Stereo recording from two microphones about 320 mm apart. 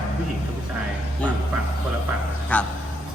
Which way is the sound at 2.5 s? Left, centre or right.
Centre.